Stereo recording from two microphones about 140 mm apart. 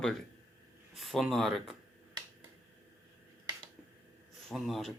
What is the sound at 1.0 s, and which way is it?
Speech, centre (ahead or behind).